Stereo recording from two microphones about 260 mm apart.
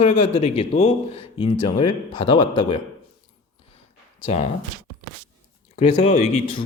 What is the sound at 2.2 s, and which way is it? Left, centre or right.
Speech, left.